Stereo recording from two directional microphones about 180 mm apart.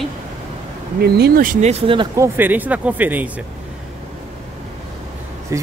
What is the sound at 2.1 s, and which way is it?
A man's voice, 15° right (ahead or behind).